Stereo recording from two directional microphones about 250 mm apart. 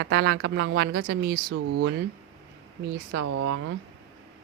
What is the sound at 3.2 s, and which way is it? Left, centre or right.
Speech, right.